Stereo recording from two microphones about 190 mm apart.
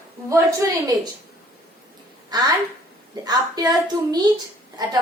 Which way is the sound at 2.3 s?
20° right (ahead or behind).